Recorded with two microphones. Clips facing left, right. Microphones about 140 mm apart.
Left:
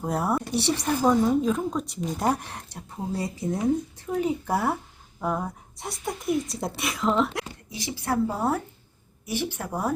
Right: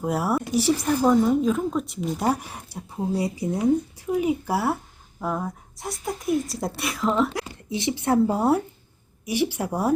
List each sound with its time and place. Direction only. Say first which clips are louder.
0.0 s a woman's voice: right 2 dB; 5° right (ahead or behind)
7.7 s a woman's voice: right 7 dB; 25° right (ahead or behind)